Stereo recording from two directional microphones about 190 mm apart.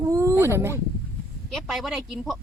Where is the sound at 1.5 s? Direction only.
Centre (ahead or behind).